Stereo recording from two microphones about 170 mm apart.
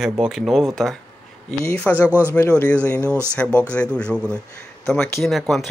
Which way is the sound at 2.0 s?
10° right (ahead or behind).